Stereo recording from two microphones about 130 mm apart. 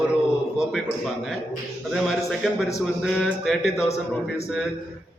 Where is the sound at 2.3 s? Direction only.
Centre (ahead or behind).